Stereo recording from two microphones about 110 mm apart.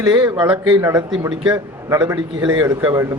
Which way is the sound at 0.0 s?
35° right (ahead or behind).